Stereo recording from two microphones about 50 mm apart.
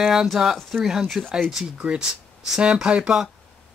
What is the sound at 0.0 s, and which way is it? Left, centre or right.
Speech, centre.